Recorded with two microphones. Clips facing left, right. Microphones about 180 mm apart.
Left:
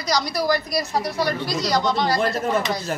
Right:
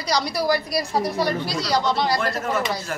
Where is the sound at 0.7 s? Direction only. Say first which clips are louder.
Right 1 dB; 30° right (ahead or behind).